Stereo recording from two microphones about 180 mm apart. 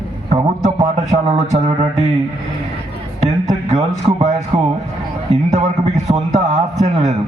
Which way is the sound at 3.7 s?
40° right (ahead or behind).